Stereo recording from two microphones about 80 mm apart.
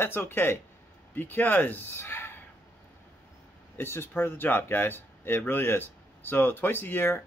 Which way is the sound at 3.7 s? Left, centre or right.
Left.